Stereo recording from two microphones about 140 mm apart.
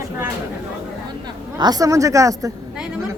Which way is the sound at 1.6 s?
25° right (ahead or behind).